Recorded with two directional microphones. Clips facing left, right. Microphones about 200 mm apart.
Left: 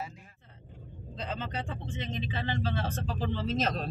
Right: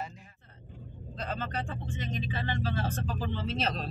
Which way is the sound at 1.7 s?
25° left (ahead or behind).